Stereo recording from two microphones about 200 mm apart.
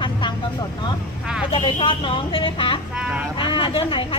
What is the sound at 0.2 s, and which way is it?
Vehicle, 25° left (ahead or behind).